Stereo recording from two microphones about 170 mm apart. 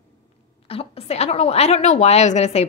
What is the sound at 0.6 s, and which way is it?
A woman's voice, 35° left (ahead or behind).